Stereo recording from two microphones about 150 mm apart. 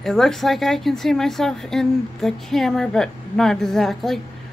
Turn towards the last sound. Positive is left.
turn(degrees=0)  # may be behind; listen again after turning